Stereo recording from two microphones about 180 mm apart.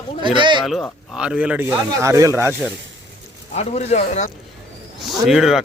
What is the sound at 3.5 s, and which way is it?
Speech, 35° left (ahead or behind).